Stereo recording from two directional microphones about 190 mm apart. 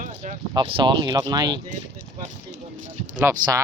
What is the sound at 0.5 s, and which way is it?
Speech, 25° right (ahead or behind).